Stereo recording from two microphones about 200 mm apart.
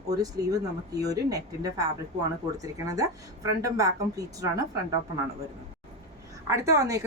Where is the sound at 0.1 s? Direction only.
20° right (ahead or behind).